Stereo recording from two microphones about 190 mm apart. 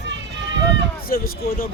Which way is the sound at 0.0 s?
65° right (ahead or behind).